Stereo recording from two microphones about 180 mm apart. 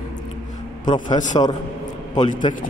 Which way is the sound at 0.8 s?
25° left (ahead or behind).